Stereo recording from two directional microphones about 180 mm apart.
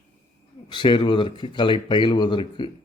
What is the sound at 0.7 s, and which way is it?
Speech, 25° left (ahead or behind).